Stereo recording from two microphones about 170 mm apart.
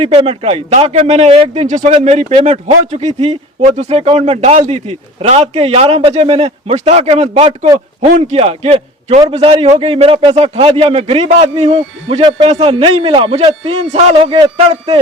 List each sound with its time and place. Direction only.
0.0 s speech: 35° right (ahead or behind)